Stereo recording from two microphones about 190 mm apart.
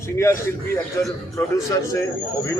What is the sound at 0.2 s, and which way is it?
A man's voice, 15° left (ahead or behind).